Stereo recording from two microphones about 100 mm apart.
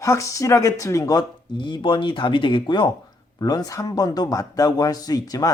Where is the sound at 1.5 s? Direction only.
55° left (ahead or behind).